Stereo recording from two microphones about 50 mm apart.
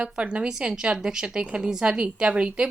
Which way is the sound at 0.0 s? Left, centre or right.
Right.